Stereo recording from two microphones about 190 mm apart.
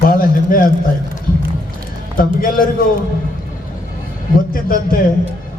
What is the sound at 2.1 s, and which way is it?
Speech, 50° left (ahead or behind).